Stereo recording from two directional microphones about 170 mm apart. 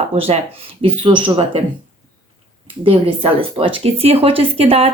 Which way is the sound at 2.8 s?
30° right (ahead or behind).